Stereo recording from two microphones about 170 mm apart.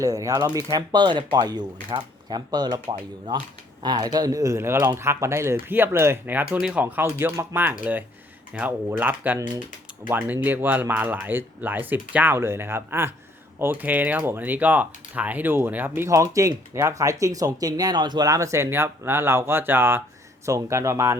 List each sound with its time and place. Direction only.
0.0 s speech: 20° right (ahead or behind)
3.8 s speech: 25° right (ahead or behind)